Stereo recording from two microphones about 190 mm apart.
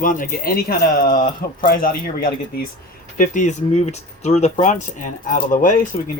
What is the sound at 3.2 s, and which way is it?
Speech, 40° left (ahead or behind).